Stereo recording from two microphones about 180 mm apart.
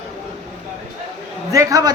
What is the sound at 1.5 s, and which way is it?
Speech, 20° right (ahead or behind).